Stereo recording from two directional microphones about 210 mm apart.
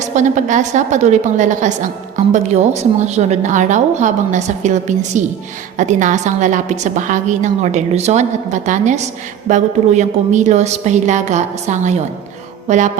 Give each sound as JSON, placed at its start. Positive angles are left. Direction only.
{"t": 0.0, "sound": "a woman's voice", "side_deg": -35}